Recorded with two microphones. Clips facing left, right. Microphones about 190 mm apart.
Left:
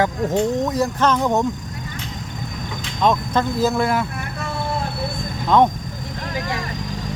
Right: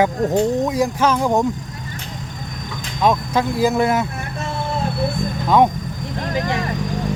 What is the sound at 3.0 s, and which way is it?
Speech, 10° right (ahead or behind).